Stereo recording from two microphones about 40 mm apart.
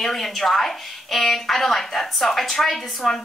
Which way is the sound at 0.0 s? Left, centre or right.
Centre.